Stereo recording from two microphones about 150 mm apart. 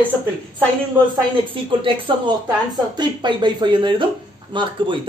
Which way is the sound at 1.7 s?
35° right (ahead or behind).